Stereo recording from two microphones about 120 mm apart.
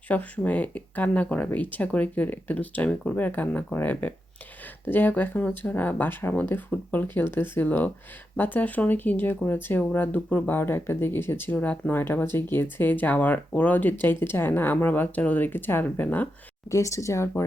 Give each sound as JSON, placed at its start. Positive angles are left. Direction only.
{"t": 0.1, "sound": "speech", "side_deg": 15}
{"t": 16.6, "sound": "speech", "side_deg": 25}